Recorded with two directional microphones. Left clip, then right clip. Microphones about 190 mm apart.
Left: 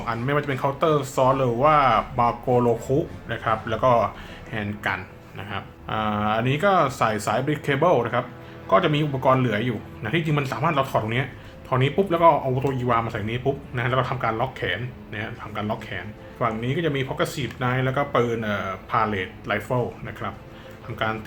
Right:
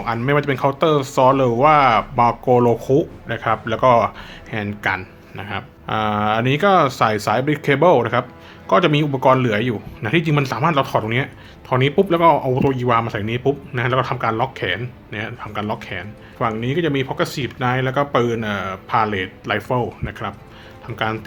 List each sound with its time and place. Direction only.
0.0 s speech: 45° right (ahead or behind)